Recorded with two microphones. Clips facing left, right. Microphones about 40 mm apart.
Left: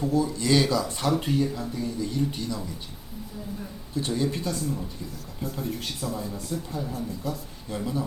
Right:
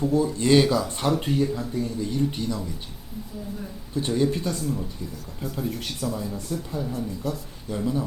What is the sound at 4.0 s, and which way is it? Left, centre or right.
Speech, right.